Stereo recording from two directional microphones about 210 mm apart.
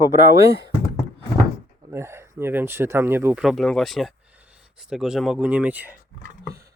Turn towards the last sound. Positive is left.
turn(degrees=-5)  # may be behind; listen again after turning